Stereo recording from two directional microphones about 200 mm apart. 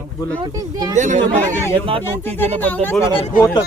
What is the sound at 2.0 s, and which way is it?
A man's voice, 10° left (ahead or behind).